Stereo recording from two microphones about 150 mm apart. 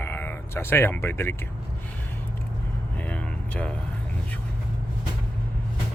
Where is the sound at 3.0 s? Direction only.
10° left (ahead or behind).